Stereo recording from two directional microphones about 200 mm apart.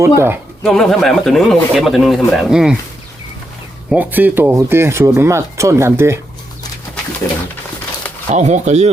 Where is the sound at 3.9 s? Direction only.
10° right (ahead or behind).